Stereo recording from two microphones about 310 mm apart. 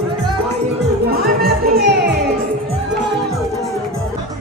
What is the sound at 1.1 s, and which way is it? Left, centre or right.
Music, right.